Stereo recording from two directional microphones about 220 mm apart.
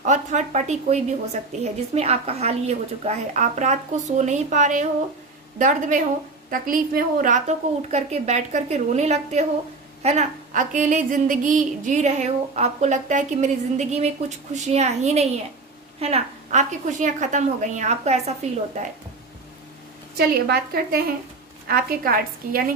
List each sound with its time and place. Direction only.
0.0 s speech: 35° right (ahead or behind)
20.1 s a woman's voice: 45° right (ahead or behind)